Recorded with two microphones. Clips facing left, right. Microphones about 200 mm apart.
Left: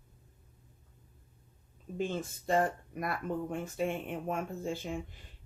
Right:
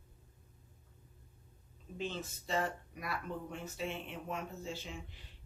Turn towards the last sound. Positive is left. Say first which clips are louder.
# left 8 dB
turn(degrees=50)  # may be behind; listen again after turning